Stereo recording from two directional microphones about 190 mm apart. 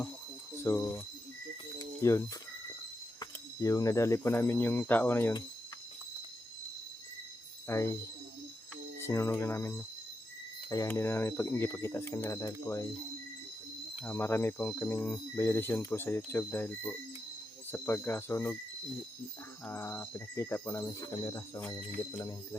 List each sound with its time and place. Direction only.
0.5 s speech: 10° left (ahead or behind)
1.8 s cricket: 15° left (ahead or behind)
3.2 s speech: 20° left (ahead or behind)
7.7 s speech: 10° left (ahead or behind)
9.0 s speech: 15° left (ahead or behind)
14.0 s speech: 10° left (ahead or behind)
19.6 s speech: 10° left (ahead or behind)